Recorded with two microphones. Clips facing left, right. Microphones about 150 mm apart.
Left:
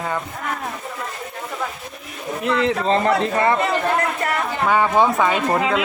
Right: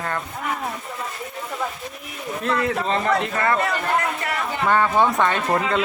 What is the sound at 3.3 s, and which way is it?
Speech, 20° left (ahead or behind).